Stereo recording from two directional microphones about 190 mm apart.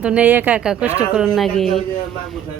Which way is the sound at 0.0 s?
5° right (ahead or behind).